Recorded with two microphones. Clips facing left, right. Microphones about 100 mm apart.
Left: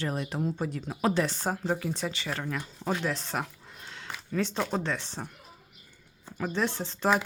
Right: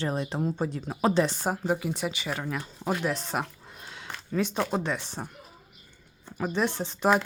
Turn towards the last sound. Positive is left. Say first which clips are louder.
# right 2 dB
turn(degrees=-15)  # may be behind; listen again after turning